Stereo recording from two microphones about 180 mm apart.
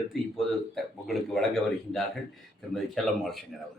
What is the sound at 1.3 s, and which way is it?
Speech, centre (ahead or behind).